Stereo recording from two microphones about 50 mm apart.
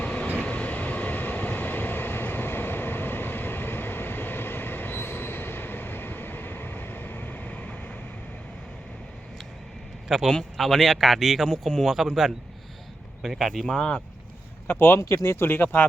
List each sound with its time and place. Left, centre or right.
0.0 s train: left
10.1 s a man's voice: centre
14.7 s speech: left
15.4 s speech: left